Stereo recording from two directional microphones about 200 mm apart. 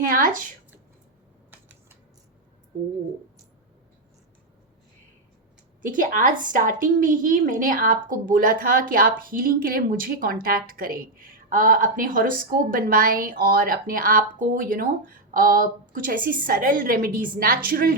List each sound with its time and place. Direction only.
0.1 s a woman's voice: 45° right (ahead or behind)
5.8 s a woman's voice: 40° right (ahead or behind)